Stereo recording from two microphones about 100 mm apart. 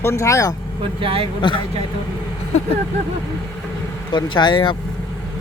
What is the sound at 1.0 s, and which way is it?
Speech, 65° right (ahead or behind).